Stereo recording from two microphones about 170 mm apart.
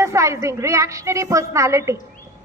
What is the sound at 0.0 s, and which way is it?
A woman's voice, 15° right (ahead or behind).